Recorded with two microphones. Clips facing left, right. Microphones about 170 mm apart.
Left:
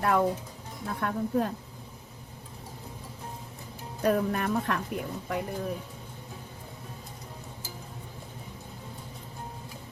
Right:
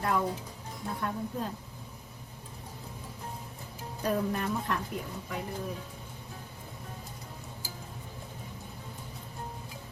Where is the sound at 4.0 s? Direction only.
70° left (ahead or behind).